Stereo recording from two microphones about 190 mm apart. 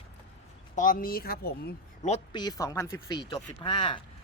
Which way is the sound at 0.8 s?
45° left (ahead or behind).